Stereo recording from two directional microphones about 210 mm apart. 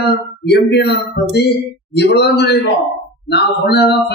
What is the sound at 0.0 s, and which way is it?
A man's voice, 50° left (ahead or behind).